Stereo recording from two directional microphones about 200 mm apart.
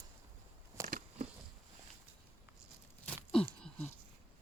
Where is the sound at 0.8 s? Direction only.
35° right (ahead or behind).